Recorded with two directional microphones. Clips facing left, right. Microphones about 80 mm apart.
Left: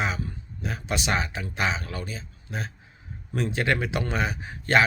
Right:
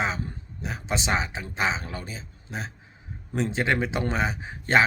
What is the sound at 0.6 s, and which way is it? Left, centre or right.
A man's voice, right.